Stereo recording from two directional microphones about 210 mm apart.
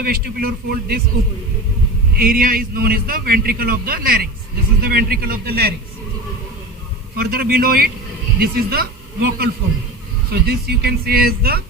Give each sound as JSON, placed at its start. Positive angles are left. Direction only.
{"t": 0.0, "sound": "a man's voice", "side_deg": -45}
{"t": 2.1, "sound": "a man's voice", "side_deg": -45}
{"t": 7.2, "sound": "a man's voice", "side_deg": -45}